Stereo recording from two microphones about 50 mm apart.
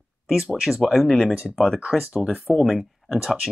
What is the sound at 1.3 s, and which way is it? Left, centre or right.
Speech, right.